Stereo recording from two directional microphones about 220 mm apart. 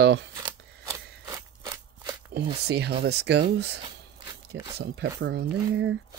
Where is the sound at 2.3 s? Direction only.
50° right (ahead or behind).